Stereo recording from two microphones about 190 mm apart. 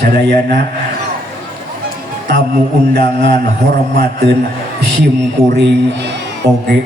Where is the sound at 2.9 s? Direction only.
60° right (ahead or behind).